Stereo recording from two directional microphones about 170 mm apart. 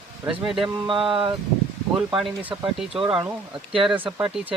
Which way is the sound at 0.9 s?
30° right (ahead or behind).